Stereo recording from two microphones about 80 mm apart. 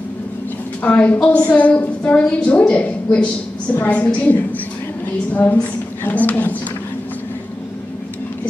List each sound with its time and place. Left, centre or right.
0.8 s a woman's voice: centre